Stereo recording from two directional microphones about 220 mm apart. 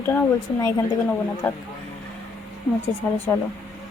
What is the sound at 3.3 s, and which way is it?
Speech, 15° left (ahead or behind).